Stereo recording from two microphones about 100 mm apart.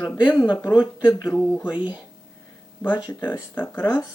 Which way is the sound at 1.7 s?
10° right (ahead or behind).